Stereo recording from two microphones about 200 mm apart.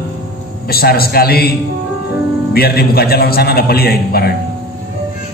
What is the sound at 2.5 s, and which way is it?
A man's voice, 50° left (ahead or behind).